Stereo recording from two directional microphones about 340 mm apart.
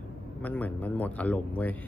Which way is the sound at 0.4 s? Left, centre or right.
Centre.